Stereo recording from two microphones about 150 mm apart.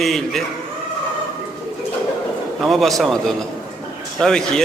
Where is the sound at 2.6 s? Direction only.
Centre (ahead or behind).